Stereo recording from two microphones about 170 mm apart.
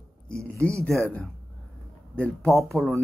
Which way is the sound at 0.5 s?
15° right (ahead or behind).